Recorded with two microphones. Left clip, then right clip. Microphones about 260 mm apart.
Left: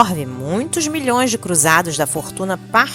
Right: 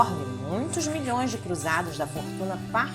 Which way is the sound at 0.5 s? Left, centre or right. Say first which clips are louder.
Left 9 dB; left.